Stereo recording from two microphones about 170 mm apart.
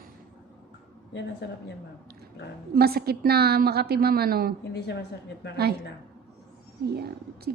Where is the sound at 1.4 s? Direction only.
90° left.